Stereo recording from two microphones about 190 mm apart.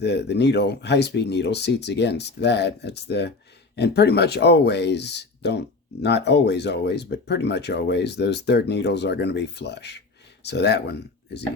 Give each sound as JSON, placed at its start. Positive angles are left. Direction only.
{"t": 0.0, "sound": "speech", "side_deg": 60}